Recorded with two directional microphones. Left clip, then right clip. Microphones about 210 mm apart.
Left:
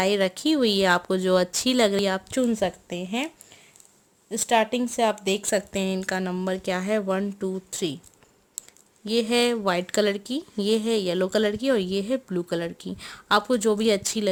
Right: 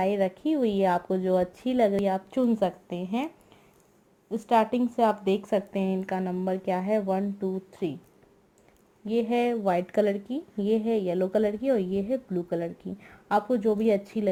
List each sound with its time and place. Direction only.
0.0 s a woman's voice: 40° left (ahead or behind); by 3.2 s 25° left (ahead or behind)
4.3 s a woman's voice: 25° left (ahead or behind)
9.0 s a woman's voice: 35° left (ahead or behind)